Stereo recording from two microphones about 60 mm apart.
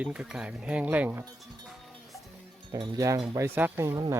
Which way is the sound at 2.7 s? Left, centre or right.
Right.